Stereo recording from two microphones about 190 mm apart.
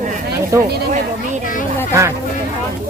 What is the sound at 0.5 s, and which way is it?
Speech, 15° right (ahead or behind).